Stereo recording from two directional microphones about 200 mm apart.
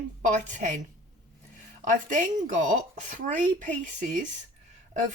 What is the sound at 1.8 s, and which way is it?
Speech, 40° right (ahead or behind).